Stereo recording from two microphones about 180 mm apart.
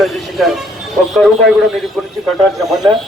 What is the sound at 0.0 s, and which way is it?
Speech, centre (ahead or behind).